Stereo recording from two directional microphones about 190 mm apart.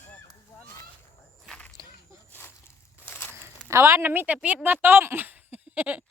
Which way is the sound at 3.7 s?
15° right (ahead or behind).